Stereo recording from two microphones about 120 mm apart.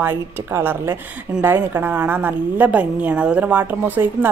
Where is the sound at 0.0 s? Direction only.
20° right (ahead or behind).